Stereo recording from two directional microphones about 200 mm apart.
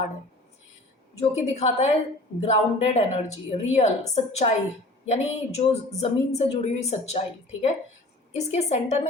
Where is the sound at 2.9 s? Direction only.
35° left (ahead or behind).